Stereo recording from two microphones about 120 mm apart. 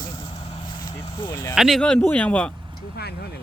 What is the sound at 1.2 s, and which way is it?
Speech, 25° left (ahead or behind).